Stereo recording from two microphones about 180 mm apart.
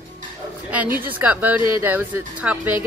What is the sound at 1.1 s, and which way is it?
Speech, 10° right (ahead or behind).